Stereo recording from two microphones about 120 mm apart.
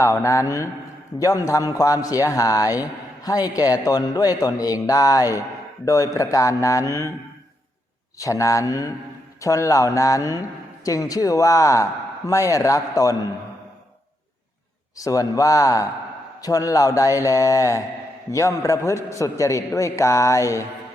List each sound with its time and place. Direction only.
0.0 s a man's voice: 25° left (ahead or behind)
8.2 s a man's voice: 25° left (ahead or behind)
14.9 s a man's voice: 30° left (ahead or behind)